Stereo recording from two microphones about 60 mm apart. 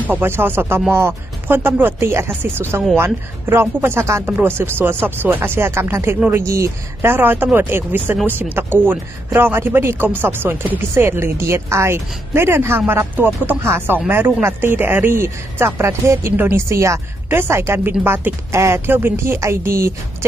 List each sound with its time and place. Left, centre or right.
0.0 s speech: right
6.3 s speech: right
7.1 s speech: right